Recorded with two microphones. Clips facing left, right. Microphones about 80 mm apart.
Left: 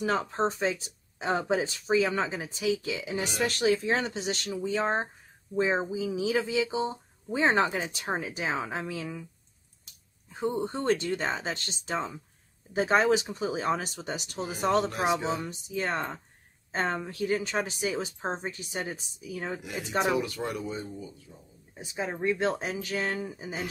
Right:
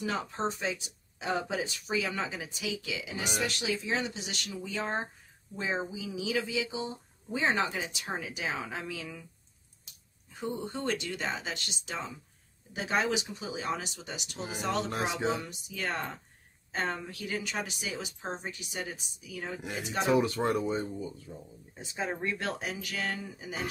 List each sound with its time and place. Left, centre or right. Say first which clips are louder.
0.0 s speech: left 5 dB; left
10.3 s speech: left 6 dB; left
15.2 s speech: even; left
20.2 s speech: right 4 dB; right
21.7 s speech: left 1 dB; centre